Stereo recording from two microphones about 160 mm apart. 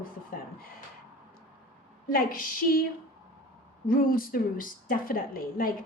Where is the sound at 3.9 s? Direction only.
60° left (ahead or behind).